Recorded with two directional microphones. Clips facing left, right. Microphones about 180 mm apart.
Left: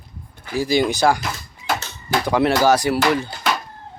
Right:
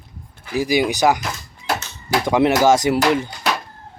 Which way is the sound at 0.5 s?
15° right (ahead or behind).